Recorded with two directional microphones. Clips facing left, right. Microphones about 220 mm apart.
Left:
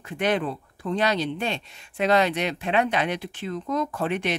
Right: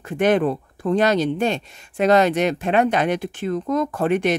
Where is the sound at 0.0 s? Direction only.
50° right (ahead or behind).